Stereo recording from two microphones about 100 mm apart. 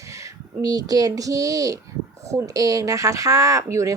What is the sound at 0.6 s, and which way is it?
Speech, 40° right (ahead or behind).